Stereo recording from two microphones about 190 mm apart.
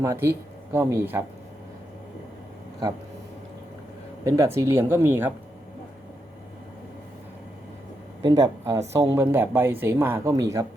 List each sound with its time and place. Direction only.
0.0 s speech: 15° right (ahead or behind)
4.2 s speech: 15° right (ahead or behind)
8.2 s speech: 20° right (ahead or behind)